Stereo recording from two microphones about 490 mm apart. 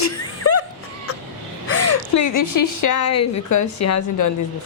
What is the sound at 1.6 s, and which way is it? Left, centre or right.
A woman's voice, left.